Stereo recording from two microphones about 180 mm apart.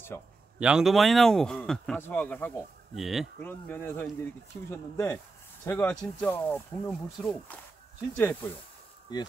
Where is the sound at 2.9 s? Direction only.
Centre (ahead or behind).